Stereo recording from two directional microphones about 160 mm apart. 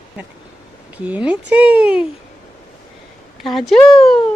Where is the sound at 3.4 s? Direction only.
Centre (ahead or behind).